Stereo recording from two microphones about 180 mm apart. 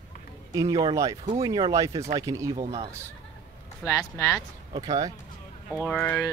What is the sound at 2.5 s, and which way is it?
Speech, 35° right (ahead or behind).